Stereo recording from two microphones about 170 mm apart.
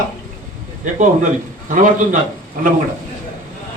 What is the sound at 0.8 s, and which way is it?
Speech, 50° right (ahead or behind).